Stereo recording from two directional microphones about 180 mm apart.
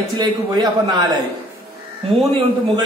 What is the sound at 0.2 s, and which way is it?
Speech, 20° right (ahead or behind).